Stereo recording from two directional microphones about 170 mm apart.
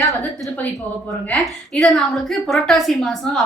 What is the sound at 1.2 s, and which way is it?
A woman's voice, 5° left (ahead or behind).